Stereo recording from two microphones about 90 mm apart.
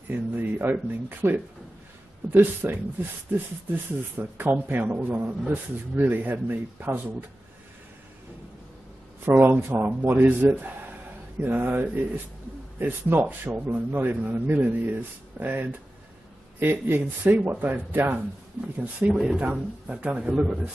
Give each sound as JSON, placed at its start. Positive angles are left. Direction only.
{"t": 0.1, "sound": "speech", "side_deg": -20}
{"t": 4.2, "sound": "speech", "side_deg": -20}
{"t": 9.2, "sound": "speech", "side_deg": -20}
{"t": 18.9, "sound": "speech", "side_deg": -10}